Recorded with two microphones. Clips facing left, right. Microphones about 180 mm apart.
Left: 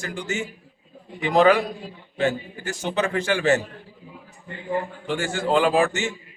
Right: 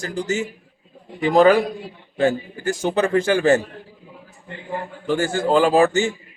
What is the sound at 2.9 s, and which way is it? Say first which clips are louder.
Speech: right 4 dB; 40° right (ahead or behind).